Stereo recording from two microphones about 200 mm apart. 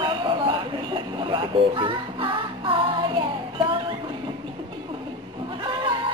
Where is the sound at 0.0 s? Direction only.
25° right (ahead or behind).